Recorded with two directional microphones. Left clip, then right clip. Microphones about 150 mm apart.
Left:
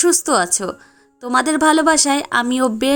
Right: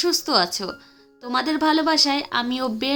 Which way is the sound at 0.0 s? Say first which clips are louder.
Left 4 dB; 50° left (ahead or behind).